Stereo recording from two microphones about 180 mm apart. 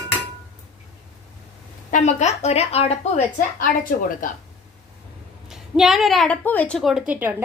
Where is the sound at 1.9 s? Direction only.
40° left (ahead or behind).